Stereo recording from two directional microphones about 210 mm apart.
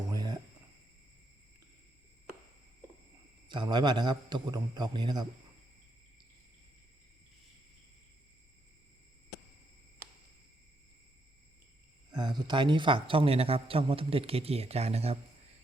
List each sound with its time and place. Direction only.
0.1 s a sound: 15° right (ahead or behind)
3.5 s speech: 20° right (ahead or behind)
12.1 s speech: 20° right (ahead or behind)